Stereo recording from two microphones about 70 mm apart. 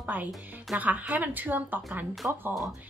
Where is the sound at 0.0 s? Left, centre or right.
Right.